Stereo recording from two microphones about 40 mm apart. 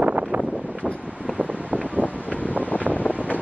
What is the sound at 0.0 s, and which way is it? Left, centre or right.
Wind noise, right.